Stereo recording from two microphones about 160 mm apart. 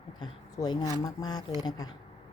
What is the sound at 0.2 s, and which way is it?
Speech, 25° left (ahead or behind).